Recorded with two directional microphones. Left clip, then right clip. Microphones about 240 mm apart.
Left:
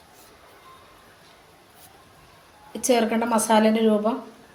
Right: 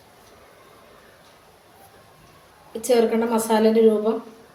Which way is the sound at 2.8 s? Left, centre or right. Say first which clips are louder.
Right 2 dB; left.